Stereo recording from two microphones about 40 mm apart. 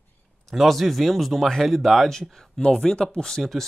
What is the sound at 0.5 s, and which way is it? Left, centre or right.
Speech, centre.